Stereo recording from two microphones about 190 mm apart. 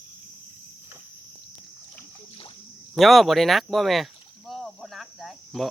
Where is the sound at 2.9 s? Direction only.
Centre (ahead or behind).